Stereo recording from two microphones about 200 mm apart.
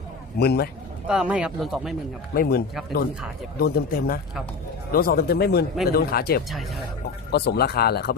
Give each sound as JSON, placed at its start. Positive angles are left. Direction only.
{"t": 0.3, "sound": "speech", "side_deg": 50}
{"t": 1.0, "sound": "speech", "side_deg": -5}
{"t": 2.3, "sound": "speech", "side_deg": 50}
{"t": 6.5, "sound": "speech", "side_deg": 0}
{"t": 7.3, "sound": "speech", "side_deg": 55}